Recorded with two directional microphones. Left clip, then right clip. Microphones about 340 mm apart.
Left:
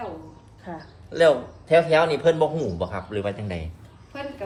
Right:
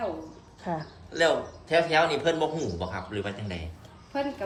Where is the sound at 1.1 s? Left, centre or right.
Centre.